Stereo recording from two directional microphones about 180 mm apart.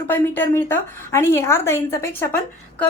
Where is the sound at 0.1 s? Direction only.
10° left (ahead or behind).